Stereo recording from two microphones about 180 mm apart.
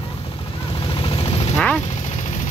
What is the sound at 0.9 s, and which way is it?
Vehicle, 30° left (ahead or behind).